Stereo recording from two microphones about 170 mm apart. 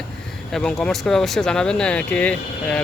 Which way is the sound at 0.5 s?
5° left (ahead or behind).